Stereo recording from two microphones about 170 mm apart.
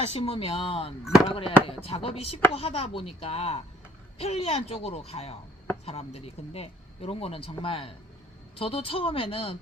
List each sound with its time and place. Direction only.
0.0 s speech: 35° left (ahead or behind)
1.0 s speech: centre (ahead or behind)
1.3 s speech: 30° left (ahead or behind)